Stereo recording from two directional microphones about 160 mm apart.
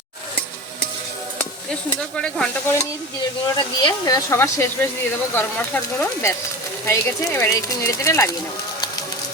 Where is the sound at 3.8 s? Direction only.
25° left (ahead or behind).